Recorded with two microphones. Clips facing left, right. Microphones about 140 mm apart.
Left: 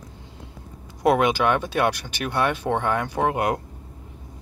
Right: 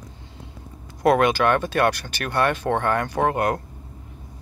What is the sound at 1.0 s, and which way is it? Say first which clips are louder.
Speech: right 1 dB; 15° left (ahead or behind).